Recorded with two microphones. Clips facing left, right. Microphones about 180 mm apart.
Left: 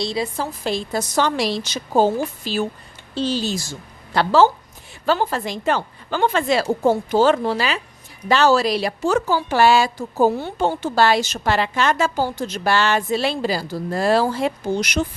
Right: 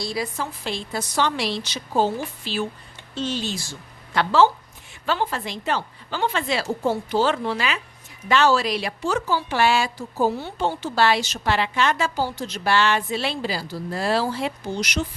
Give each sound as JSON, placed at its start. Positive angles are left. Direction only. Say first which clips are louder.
{"t": 0.0, "sound": "a woman's voice", "louder": "left 4 dB", "side_deg": 25}